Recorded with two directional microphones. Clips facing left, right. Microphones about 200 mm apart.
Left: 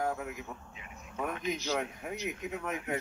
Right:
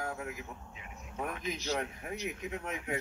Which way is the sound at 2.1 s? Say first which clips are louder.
Left 1 dB; centre (ahead or behind).